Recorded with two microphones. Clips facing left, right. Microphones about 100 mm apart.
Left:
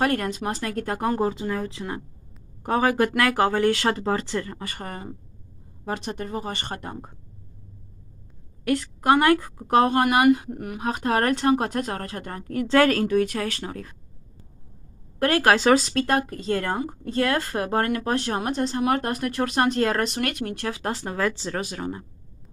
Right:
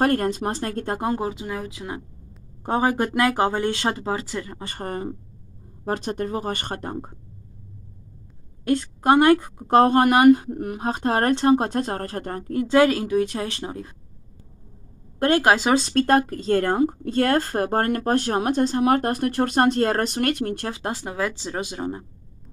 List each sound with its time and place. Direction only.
0.0 s speech: 35° right (ahead or behind); by 2.0 s 5° right (ahead or behind)
2.6 s speech: 25° right (ahead or behind)
4.6 s speech: 30° right (ahead or behind)
8.6 s speech: 30° right (ahead or behind)
9.7 s speech: 35° right (ahead or behind)
12.6 s speech: 15° right (ahead or behind)
15.1 s speech: 25° right (ahead or behind)
15.8 s speech: 40° right (ahead or behind)
21.0 s speech: 10° right (ahead or behind)